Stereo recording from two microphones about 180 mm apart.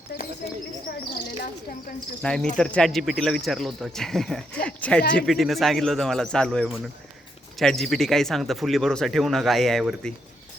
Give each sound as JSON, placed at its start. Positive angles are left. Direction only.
{"t": 0.1, "sound": "speech", "side_deg": 65}
{"t": 2.2, "sound": "speech", "side_deg": 5}